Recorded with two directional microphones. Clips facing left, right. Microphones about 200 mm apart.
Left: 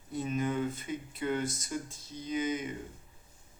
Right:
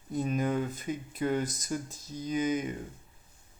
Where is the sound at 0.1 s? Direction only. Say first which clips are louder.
Right 3 dB; 40° right (ahead or behind).